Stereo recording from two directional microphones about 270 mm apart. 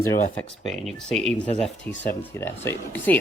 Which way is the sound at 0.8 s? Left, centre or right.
Centre.